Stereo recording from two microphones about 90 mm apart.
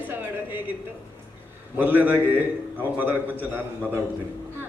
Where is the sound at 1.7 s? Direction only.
20° right (ahead or behind).